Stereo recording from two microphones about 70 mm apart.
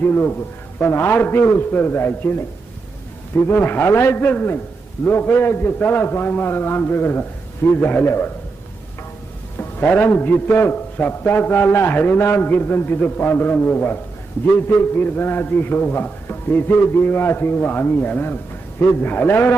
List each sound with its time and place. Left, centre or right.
0.0 s a man's voice: left
9.6 s a man's voice: left